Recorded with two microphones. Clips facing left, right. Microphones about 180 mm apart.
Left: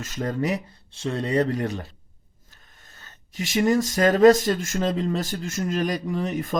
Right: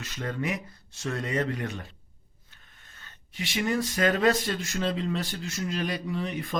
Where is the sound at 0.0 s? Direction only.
40° left (ahead or behind).